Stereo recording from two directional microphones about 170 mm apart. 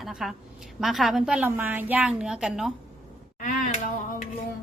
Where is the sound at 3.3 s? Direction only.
50° left (ahead or behind).